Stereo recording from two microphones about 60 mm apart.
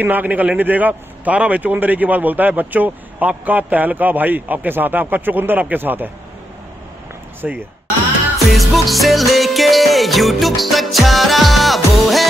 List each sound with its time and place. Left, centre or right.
0.0 s a man's voice: right
7.4 s speech: centre
8.5 s music: centre